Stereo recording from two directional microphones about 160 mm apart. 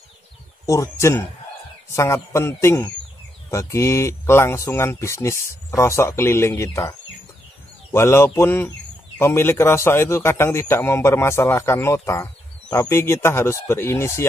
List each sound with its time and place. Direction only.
0.7 s a man's voice: 20° left (ahead or behind)